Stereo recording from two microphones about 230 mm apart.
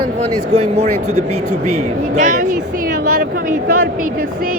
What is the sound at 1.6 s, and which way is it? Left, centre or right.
Speech, right.